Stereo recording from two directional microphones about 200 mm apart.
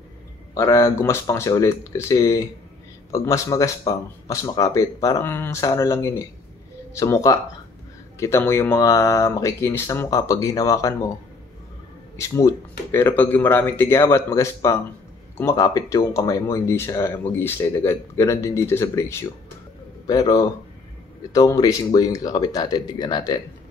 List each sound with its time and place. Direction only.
0.6 s speech: 15° left (ahead or behind)
12.2 s speech: 15° left (ahead or behind)